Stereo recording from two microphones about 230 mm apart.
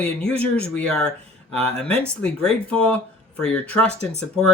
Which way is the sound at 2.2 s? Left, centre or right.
Centre.